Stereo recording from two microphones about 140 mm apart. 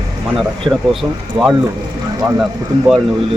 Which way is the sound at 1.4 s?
40° right (ahead or behind).